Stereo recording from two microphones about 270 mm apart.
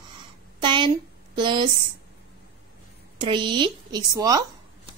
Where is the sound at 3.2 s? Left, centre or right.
Centre.